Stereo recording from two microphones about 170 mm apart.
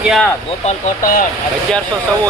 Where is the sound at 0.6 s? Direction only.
55° left (ahead or behind).